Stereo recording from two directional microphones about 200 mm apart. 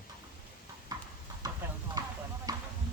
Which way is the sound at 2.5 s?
20° right (ahead or behind).